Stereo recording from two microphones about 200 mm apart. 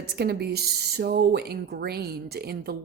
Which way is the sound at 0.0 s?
55° right (ahead or behind).